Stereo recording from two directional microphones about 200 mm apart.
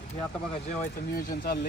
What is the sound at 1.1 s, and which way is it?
Speech, 50° left (ahead or behind).